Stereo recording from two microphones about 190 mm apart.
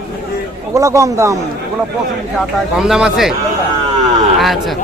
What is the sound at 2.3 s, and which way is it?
Speech, centre (ahead or behind).